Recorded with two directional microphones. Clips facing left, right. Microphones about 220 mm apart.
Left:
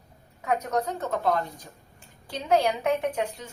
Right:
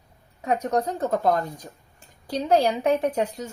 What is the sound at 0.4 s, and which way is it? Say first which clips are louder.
A woman's voice: right 3 dB; 35° right (ahead or behind).